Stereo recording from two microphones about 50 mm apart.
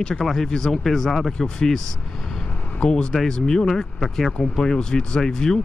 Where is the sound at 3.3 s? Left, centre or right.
Centre.